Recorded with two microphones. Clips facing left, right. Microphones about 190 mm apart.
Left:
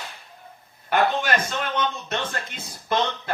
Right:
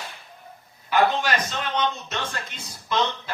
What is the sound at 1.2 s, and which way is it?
A man's voice, 50° left (ahead or behind).